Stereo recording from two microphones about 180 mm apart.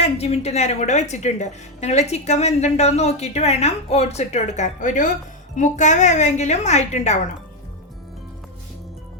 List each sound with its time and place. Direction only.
0.0 s a woman's voice: 35° left (ahead or behind)